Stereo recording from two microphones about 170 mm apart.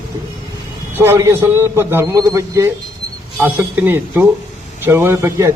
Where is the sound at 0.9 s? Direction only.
15° right (ahead or behind).